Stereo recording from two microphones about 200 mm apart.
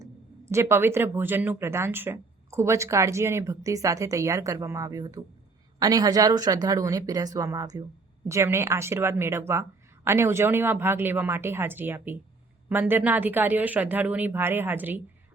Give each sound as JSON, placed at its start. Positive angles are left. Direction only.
{"t": 0.5, "sound": "speech", "side_deg": -10}